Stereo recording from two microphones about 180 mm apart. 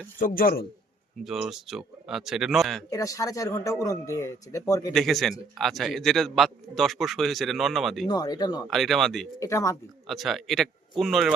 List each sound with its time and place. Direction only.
0.2 s a man's voice: 50° left (ahead or behind)
1.2 s a man's voice: centre (ahead or behind)
2.9 s speech: 20° left (ahead or behind)
4.9 s a man's voice: centre (ahead or behind)
8.0 s speech: 20° left (ahead or behind)
8.7 s a man's voice: centre (ahead or behind)
9.4 s speech: 15° left (ahead or behind)
10.1 s a man's voice: centre (ahead or behind)